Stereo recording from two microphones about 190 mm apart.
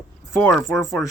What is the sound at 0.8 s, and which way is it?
Speech, 15° left (ahead or behind).